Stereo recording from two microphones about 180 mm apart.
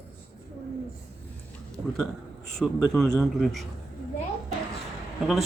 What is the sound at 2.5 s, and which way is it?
Speech, centre (ahead or behind).